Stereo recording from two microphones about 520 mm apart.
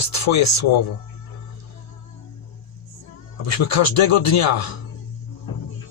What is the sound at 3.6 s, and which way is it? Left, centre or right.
Speech, left.